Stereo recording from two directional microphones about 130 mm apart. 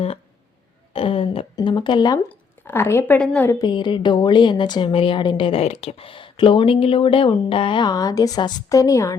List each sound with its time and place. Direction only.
0.9 s a sound: 45° left (ahead or behind)
1.6 s a woman's voice: 35° left (ahead or behind)
2.3 s speech: 15° left (ahead or behind)
3.5 s a woman's voice: 35° left (ahead or behind)